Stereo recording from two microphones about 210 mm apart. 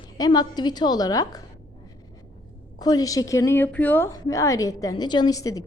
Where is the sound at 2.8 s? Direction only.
20° left (ahead or behind).